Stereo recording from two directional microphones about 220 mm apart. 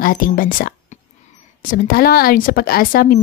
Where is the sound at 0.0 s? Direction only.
40° left (ahead or behind).